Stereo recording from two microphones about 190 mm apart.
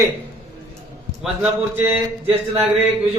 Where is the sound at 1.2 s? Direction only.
5° right (ahead or behind).